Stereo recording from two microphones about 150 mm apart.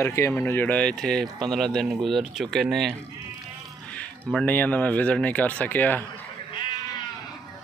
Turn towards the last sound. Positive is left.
turn(degrees=25)  # may be behind; listen again after turning